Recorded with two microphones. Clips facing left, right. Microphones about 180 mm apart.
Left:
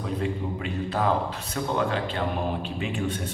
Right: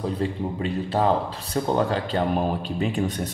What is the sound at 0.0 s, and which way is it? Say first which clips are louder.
A man's voice: right 3 dB; 30° right (ahead or behind).